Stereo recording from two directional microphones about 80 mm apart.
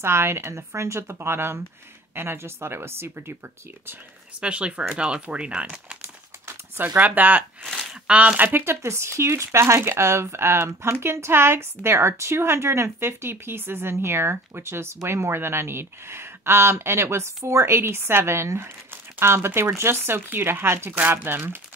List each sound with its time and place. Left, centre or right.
0.0 s speech: right
4.4 s speech: centre
7.0 s speech: right
8.8 s speech: right